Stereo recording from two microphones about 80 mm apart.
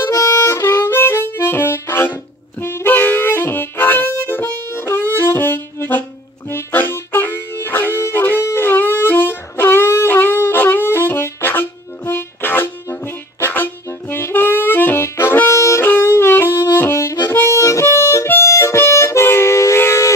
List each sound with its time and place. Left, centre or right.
0.1 s harmonica: left
6.5 s music: left
13.4 s saxophone: left
15.8 s music: left
17.3 s harmonica: left